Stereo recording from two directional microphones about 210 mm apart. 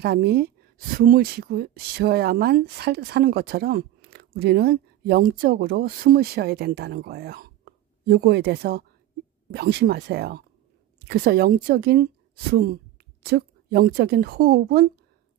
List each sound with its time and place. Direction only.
0.0 s speech: 50° right (ahead or behind)